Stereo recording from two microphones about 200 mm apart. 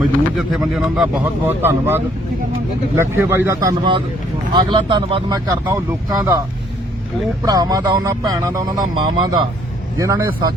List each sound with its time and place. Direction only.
0.3 s speech: centre (ahead or behind)
3.0 s a man's voice: 10° right (ahead or behind)
7.4 s a man's voice: 20° right (ahead or behind)